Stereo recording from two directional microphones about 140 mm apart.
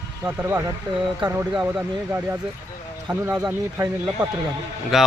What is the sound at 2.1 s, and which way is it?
Speech, 15° right (ahead or behind).